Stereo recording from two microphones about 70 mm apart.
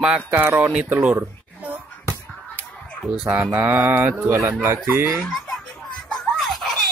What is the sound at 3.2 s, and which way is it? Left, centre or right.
Speech, right.